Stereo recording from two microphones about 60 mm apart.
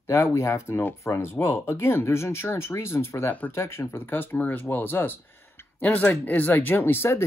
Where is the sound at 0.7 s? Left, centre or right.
Left.